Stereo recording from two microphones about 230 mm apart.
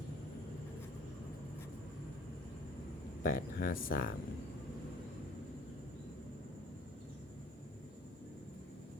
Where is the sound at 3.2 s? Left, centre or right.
Left.